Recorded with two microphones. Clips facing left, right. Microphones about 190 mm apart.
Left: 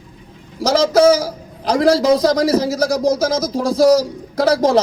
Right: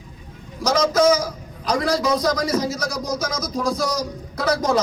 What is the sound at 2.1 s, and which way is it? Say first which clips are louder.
Speech: left 6 dB; 30° left (ahead or behind).